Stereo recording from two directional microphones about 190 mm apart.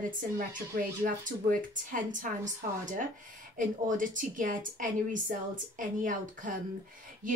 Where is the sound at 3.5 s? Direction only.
45° right (ahead or behind).